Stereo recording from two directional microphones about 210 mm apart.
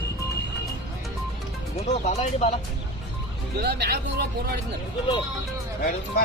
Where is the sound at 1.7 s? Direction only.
30° left (ahead or behind).